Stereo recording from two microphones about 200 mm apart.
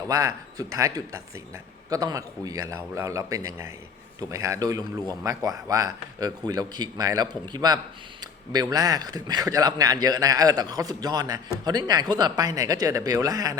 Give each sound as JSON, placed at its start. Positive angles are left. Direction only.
{"t": 0.1, "sound": "speech", "side_deg": -15}